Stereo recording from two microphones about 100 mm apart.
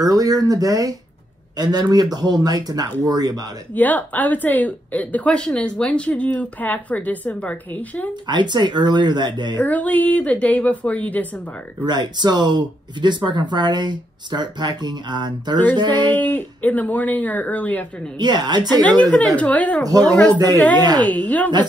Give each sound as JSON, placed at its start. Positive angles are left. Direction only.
{"t": 0.0, "sound": "speech", "side_deg": -40}
{"t": 3.7, "sound": "a woman's voice", "side_deg": 15}
{"t": 8.3, "sound": "speech", "side_deg": -50}
{"t": 9.6, "sound": "a woman's voice", "side_deg": 15}
{"t": 11.8, "sound": "speech", "side_deg": -45}
{"t": 16.1, "sound": "a woman's voice", "side_deg": 20}
{"t": 18.1, "sound": "speech", "side_deg": -45}
{"t": 19.1, "sound": "a woman's voice", "side_deg": 10}